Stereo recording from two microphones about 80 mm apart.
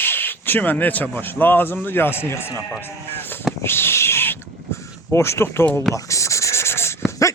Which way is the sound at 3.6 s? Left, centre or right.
Left.